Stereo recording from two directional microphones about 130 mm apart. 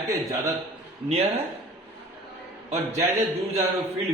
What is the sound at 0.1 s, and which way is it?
Speech, 25° right (ahead or behind).